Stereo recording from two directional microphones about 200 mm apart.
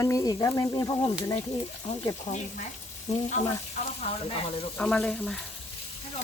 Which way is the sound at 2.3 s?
35° left (ahead or behind).